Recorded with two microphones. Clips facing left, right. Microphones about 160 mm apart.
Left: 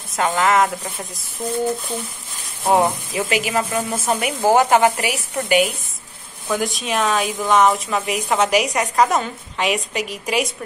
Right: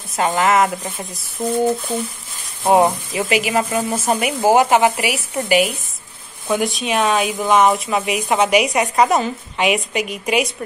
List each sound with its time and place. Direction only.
0.2 s speech: 5° right (ahead or behind)
2.6 s speech: 20° right (ahead or behind)
3.2 s speech: 5° right (ahead or behind)
3.9 s speech: 25° right (ahead or behind)
4.2 s speech: 10° right (ahead or behind)